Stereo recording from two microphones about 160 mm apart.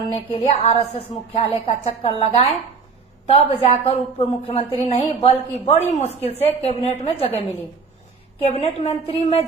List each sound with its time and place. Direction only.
0.3 s a woman's voice: 35° left (ahead or behind)